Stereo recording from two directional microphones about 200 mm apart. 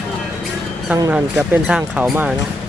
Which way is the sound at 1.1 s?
5° right (ahead or behind).